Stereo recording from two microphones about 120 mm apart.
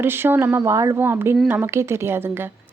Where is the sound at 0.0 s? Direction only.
20° right (ahead or behind).